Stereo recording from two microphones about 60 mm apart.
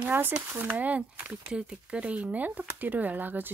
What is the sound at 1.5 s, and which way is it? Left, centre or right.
Speech, centre.